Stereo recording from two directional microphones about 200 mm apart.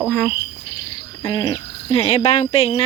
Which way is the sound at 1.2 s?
20° left (ahead or behind).